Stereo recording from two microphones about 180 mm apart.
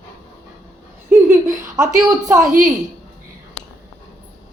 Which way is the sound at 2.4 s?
50° right (ahead or behind).